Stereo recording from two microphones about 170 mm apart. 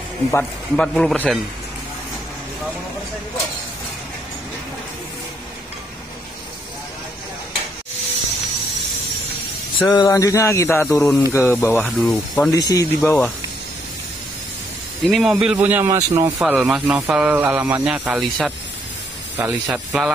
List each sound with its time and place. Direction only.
0.3 s speech: 10° left (ahead or behind)
9.8 s speech: 20° left (ahead or behind)
11.0 s speech: 5° left (ahead or behind)
12.4 s speech: 20° left (ahead or behind)
15.0 s speech: centre (ahead or behind); by 16.3 s 20° right (ahead or behind)
16.3 s speech: 5° right (ahead or behind)